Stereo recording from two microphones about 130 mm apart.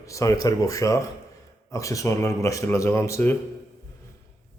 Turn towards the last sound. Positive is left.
turn(degrees=20)  # may be behind; listen again after turning